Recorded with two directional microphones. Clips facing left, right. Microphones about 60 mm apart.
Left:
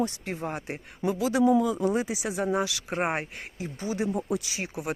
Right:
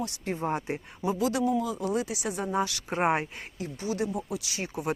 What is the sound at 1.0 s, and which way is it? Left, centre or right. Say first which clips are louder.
Speech: left 2 dB; left.